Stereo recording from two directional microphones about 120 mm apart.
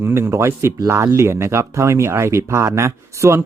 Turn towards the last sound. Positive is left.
turn(degrees=-25)  # may be behind; listen again after turning